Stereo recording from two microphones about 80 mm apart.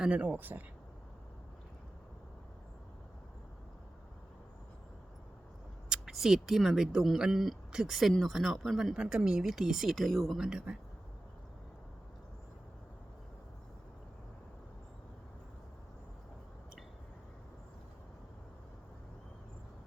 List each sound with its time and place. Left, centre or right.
0.0 s speech: centre
5.9 s speech: centre